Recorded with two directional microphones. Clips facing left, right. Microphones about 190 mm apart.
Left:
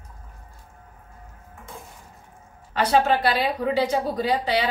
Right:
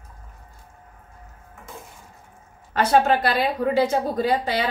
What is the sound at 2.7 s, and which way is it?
A woman's voice, 50° right (ahead or behind).